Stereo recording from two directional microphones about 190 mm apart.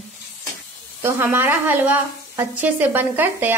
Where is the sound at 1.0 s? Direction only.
10° right (ahead or behind).